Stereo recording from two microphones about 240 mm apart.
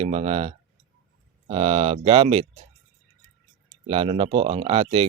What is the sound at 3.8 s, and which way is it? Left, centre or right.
Speech, right.